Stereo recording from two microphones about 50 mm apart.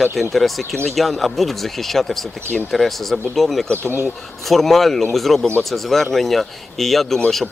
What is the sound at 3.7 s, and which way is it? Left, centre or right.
Speech, right.